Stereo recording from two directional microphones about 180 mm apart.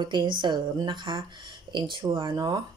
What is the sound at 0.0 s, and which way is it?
Speech, 25° right (ahead or behind).